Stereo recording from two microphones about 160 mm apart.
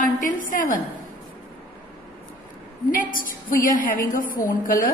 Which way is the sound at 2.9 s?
60° left (ahead or behind).